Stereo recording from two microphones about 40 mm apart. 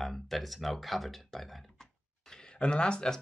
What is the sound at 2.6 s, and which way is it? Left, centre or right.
Speech, left.